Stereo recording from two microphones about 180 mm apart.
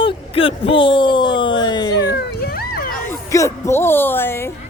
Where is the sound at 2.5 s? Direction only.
55° left (ahead or behind).